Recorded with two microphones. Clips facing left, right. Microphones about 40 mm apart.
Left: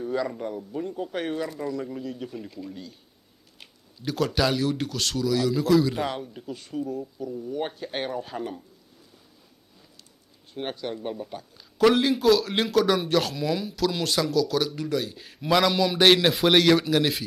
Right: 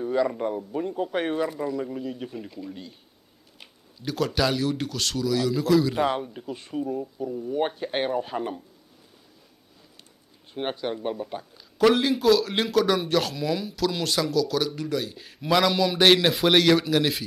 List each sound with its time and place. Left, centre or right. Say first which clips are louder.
0.0 s speech: right 4 dB; centre
3.5 s a man's voice: even; centre
6.0 s speech: right 5 dB; centre
10.5 s speech: right 3 dB; centre
11.5 s a man's voice: even; centre